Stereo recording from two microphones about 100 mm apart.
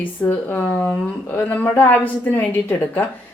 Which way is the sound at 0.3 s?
20° left (ahead or behind).